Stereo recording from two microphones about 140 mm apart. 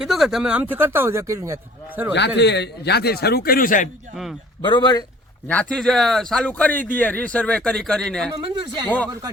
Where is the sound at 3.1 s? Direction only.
90° left.